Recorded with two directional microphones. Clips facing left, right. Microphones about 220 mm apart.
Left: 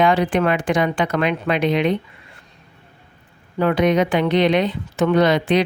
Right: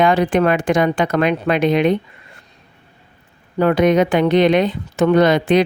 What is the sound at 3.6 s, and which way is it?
A woman's voice, 45° right (ahead or behind).